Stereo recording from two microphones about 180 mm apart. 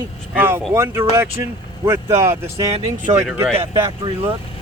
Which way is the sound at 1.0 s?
30° right (ahead or behind).